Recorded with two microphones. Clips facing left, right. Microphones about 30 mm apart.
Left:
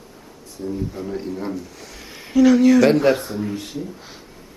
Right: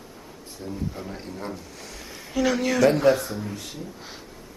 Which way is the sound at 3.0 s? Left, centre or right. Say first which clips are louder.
Left 2 dB; centre.